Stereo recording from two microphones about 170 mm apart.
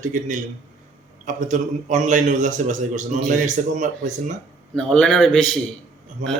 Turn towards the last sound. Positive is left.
turn(degrees=-50)  # may be behind; listen again after turning